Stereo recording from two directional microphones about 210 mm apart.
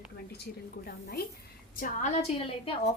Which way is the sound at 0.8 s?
45° left (ahead or behind).